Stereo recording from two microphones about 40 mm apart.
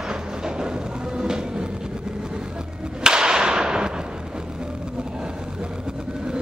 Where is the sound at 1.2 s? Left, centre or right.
Right.